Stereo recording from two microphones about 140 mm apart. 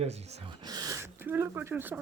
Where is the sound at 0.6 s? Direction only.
30° right (ahead or behind).